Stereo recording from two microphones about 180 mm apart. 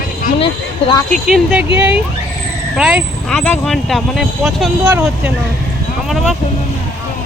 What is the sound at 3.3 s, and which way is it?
Speech, 5° left (ahead or behind).